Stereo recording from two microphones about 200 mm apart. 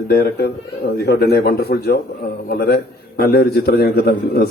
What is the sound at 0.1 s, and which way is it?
A man's voice, 50° left (ahead or behind).